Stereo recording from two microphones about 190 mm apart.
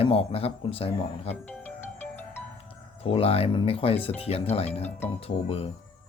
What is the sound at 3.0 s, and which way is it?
Speech, 30° left (ahead or behind).